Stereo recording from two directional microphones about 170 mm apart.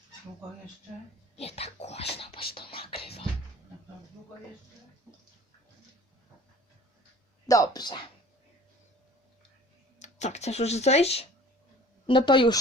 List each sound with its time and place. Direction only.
1.4 s speech: 35° left (ahead or behind)
2.6 s whispering: 30° left (ahead or behind)
7.4 s speech: 20° left (ahead or behind)
10.0 s speech: 45° left (ahead or behind); by 12.5 s 25° left (ahead or behind)